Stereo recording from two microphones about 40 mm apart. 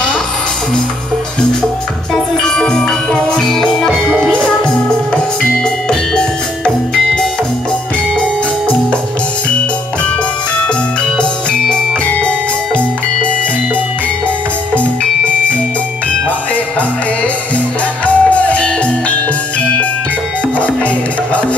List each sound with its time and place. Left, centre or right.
2.4 s music: centre
5.9 s music: left
11.7 s music: left
18.0 s music: left